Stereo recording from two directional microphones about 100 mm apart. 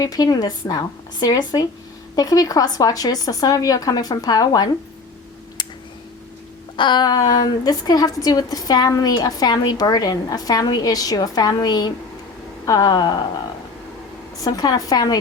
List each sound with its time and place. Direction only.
0.0 s a woman's voice: 40° left (ahead or behind)
6.7 s a woman's voice: 50° left (ahead or behind)
14.4 s a woman's voice: 40° left (ahead or behind)